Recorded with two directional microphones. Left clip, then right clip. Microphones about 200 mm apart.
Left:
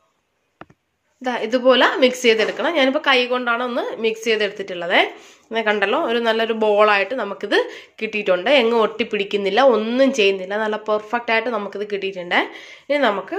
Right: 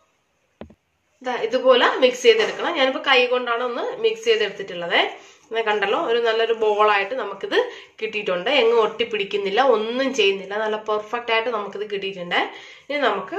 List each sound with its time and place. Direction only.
1.2 s speech: 55° left (ahead or behind)